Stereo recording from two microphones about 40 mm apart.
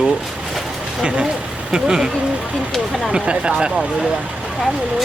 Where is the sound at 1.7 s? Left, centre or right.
Centre.